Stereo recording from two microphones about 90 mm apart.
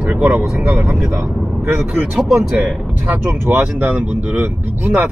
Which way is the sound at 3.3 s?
25° right (ahead or behind).